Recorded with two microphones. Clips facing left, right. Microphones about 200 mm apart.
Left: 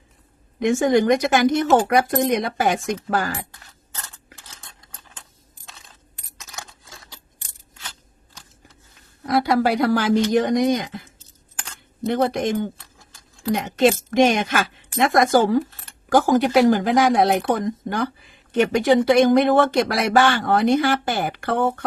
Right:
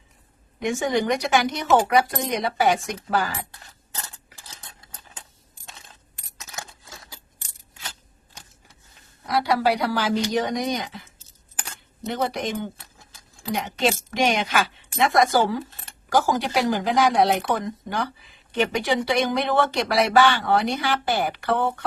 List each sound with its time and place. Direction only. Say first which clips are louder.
0.7 s speech: left 6 dB; 50° left (ahead or behind)
3.9 s cutlery: right 1 dB; 10° right (ahead or behind)
9.2 s speech: left 3 dB; 50° left (ahead or behind)
12.0 s speech: left 6 dB; 50° left (ahead or behind)
18.5 s speech: left 6 dB; 45° left (ahead or behind)